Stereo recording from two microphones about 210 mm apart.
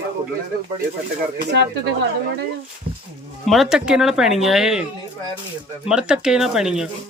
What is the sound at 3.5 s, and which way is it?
Speech, centre (ahead or behind).